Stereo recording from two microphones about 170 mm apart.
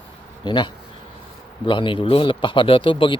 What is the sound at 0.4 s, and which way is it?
Speech, 30° left (ahead or behind).